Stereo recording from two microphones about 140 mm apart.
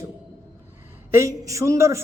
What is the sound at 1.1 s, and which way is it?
Speech, 20° right (ahead or behind).